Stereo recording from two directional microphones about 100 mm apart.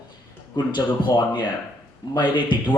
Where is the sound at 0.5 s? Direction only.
50° left (ahead or behind).